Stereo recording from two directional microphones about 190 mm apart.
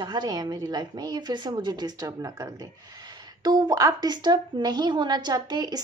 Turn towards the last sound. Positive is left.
turn(degrees=-20)  # may be behind; listen again after turning